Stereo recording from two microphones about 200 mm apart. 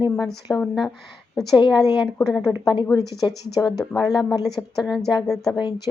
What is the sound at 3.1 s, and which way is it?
Speech, 20° left (ahead or behind).